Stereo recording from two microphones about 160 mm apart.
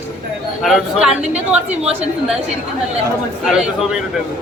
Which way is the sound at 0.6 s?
5° right (ahead or behind).